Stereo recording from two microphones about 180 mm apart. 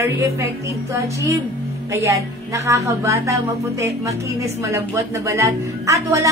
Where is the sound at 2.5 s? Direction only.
15° right (ahead or behind).